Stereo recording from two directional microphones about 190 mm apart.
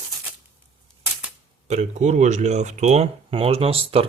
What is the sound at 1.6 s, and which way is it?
Speech, 40° right (ahead or behind).